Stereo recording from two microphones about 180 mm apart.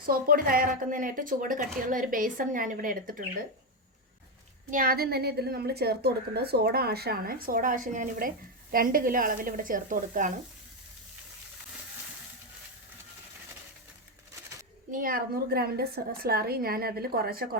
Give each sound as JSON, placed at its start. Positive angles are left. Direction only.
{"t": 0.0, "sound": "a woman's voice", "side_deg": -50}
{"t": 4.7, "sound": "a woman's voice", "side_deg": -55}
{"t": 14.8, "sound": "a woman's voice", "side_deg": -50}